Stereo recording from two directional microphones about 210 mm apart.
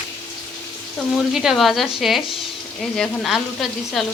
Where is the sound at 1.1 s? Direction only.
Centre (ahead or behind).